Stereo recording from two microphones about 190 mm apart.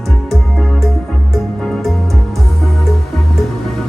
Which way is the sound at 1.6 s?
Centre (ahead or behind).